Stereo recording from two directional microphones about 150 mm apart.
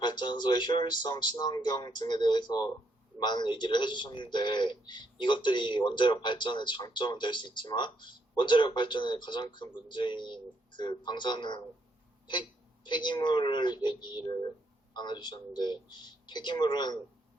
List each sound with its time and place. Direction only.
0.0 s a man's voice: 30° left (ahead or behind)